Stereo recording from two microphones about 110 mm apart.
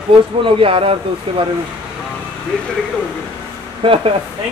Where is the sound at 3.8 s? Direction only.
55° right (ahead or behind).